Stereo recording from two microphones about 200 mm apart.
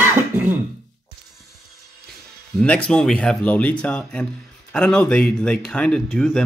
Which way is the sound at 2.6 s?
5° left (ahead or behind).